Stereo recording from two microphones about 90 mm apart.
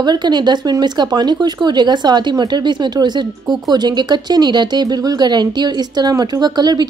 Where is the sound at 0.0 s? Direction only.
50° right (ahead or behind).